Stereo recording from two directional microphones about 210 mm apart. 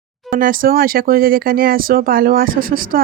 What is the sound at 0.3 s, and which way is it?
Speech, 40° right (ahead or behind).